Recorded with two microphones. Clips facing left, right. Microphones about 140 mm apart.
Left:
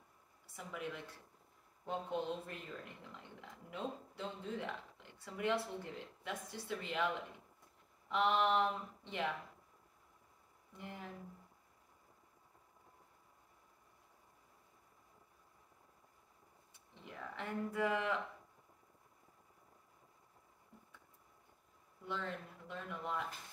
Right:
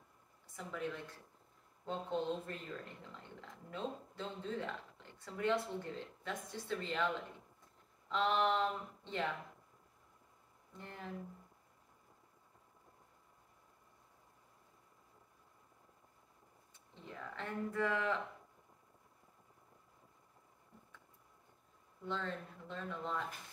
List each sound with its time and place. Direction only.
0.6 s speech: 10° left (ahead or behind)
8.1 s speech: 15° left (ahead or behind)
10.8 s speech: 15° left (ahead or behind)
17.0 s speech: 10° left (ahead or behind)
22.0 s speech: 10° left (ahead or behind)